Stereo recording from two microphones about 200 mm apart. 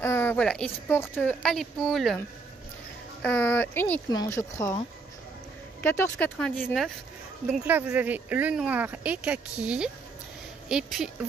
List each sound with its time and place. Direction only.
0.0 s speech: 10° left (ahead or behind)
7.6 s speech: 10° right (ahead or behind)